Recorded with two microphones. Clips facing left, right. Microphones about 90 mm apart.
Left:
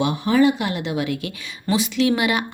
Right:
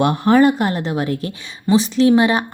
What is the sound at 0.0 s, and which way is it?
A woman's voice, 55° right (ahead or behind).